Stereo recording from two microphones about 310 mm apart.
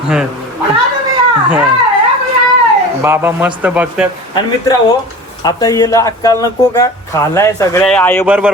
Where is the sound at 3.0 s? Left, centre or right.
Centre.